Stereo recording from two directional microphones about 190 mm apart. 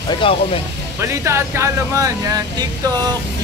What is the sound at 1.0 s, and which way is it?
Speech, 15° right (ahead or behind).